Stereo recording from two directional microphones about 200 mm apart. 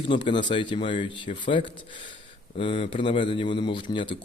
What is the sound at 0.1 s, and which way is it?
Speech, 25° left (ahead or behind).